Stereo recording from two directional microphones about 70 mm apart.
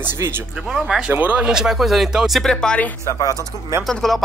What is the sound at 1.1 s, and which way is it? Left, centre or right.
Speech, right.